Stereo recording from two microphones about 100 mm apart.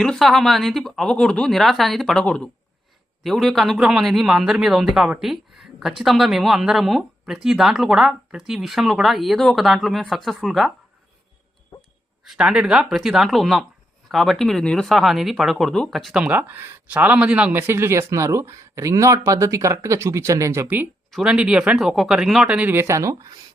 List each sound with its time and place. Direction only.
0.0 s speech: 5° left (ahead or behind)
5.2 s a sound: centre (ahead or behind)
6.0 s speech: 5° right (ahead or behind)
12.2 s speech: 5° right (ahead or behind)
16.2 s speech: 15° right (ahead or behind)
21.1 s speech: 5° right (ahead or behind)
22.5 s speech: 20° right (ahead or behind)